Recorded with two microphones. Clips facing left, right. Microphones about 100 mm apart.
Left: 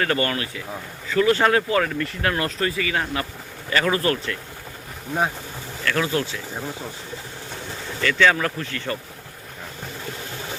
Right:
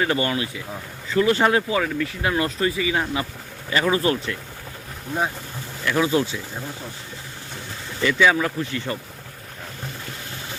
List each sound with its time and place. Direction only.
0.0 s speech: 15° right (ahead or behind)
5.8 s speech: 15° right (ahead or behind)
8.0 s speech: 10° right (ahead or behind)